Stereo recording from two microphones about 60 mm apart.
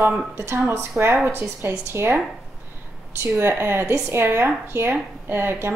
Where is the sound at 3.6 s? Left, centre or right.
Right.